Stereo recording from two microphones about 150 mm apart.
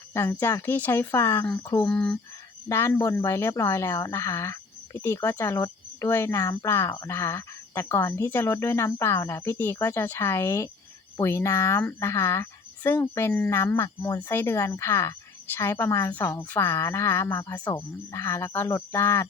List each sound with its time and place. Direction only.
0.1 s speech: 20° left (ahead or behind)
2.6 s speech: 20° left (ahead or behind)